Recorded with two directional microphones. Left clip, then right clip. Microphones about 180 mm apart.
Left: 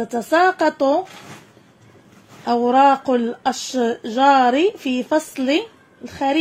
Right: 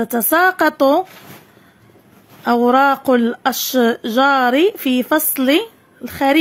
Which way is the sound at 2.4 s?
40° right (ahead or behind).